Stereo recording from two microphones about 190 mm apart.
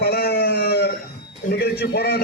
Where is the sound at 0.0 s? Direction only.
55° left (ahead or behind).